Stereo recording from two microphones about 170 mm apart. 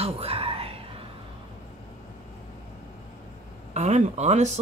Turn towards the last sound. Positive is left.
turn(degrees=-40)  # may be behind; listen again after turning